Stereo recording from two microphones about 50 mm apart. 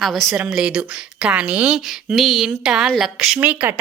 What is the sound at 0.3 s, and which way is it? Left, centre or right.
A woman's voice, centre.